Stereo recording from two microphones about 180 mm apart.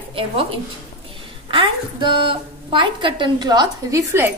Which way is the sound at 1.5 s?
25° right (ahead or behind).